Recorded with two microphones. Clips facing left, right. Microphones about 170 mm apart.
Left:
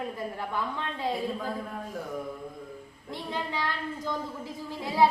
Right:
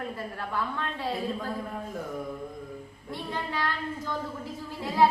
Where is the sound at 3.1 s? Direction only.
15° left (ahead or behind).